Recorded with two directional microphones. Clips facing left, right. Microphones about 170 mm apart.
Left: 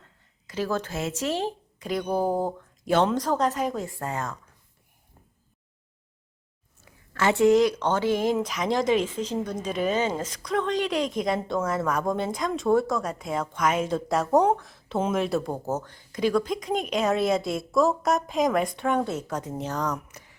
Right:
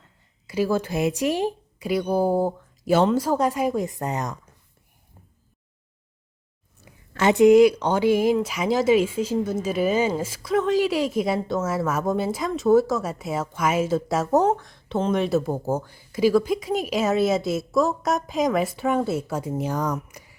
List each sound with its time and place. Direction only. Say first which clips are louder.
0.4 s speech: right 5 dB; 10° right (ahead or behind)
7.1 s speech: right 5 dB; 20° right (ahead or behind)